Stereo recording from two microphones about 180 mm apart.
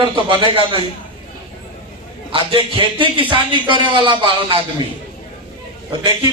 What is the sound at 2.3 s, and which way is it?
A man's voice, 30° right (ahead or behind).